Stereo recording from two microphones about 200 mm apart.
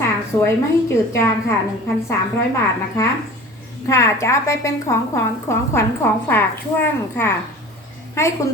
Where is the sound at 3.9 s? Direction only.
15° left (ahead or behind).